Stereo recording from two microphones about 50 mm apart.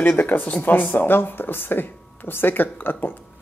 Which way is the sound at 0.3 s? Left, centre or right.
Left.